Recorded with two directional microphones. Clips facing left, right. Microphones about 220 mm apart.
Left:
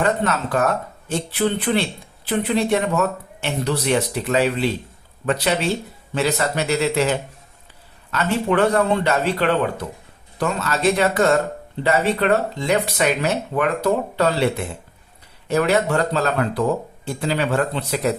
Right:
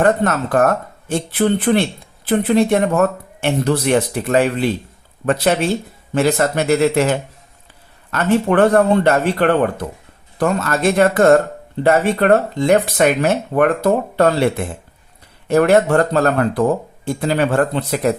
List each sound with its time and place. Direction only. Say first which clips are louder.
0.0 s speech: right 5 dB; 50° right (ahead or behind)
15.4 s speech: right 6 dB; 50° right (ahead or behind)